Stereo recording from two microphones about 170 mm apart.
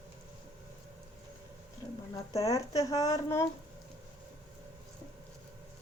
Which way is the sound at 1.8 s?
25° left (ahead or behind).